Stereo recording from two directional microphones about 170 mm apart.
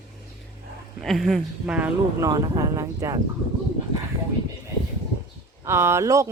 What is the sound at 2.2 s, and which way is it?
Speech, 25° right (ahead or behind).